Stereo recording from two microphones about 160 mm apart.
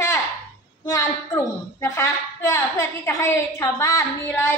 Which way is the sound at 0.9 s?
15° left (ahead or behind).